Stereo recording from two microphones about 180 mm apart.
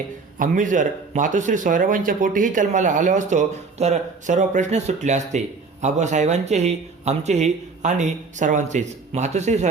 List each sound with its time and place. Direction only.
0.3 s speech: 45° right (ahead or behind)